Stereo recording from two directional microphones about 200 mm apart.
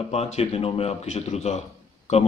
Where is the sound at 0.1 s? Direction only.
30° left (ahead or behind).